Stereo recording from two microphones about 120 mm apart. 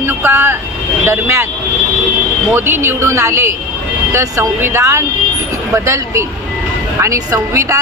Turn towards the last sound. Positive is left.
turn(degrees=-25)  # may be behind; listen again after turning